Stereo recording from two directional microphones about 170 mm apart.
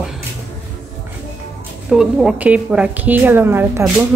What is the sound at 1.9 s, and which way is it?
A woman's voice, 5° right (ahead or behind).